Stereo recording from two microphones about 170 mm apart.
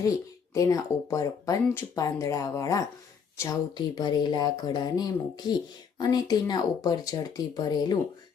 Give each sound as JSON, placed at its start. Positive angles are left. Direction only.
{"t": 0.5, "sound": "speech", "side_deg": 20}